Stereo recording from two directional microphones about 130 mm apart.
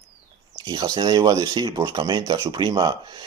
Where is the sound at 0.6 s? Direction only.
30° right (ahead or behind).